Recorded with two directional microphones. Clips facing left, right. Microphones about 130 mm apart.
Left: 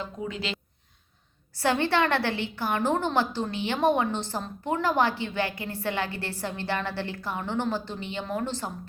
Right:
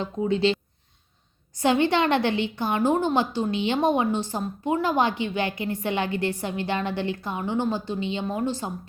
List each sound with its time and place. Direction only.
0.0 s speech: 25° right (ahead or behind)
1.5 s a woman's voice: 15° right (ahead or behind)